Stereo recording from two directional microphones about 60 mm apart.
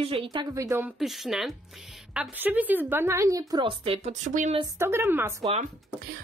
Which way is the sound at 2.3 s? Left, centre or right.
Right.